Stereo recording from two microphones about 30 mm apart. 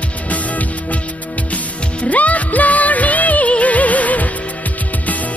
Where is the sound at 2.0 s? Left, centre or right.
Left.